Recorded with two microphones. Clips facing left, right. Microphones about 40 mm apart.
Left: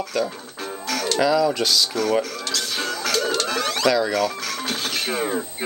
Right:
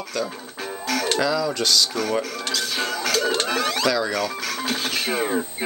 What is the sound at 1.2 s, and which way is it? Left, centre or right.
Speech, centre.